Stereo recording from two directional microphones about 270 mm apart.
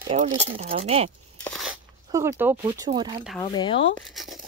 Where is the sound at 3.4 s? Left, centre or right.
Centre.